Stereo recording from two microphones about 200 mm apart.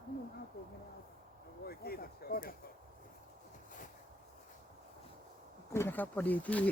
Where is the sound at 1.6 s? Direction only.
50° left (ahead or behind).